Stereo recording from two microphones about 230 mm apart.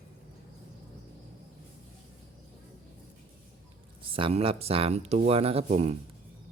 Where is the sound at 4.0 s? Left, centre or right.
Right.